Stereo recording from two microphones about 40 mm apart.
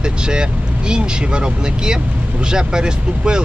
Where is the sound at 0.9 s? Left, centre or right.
Right.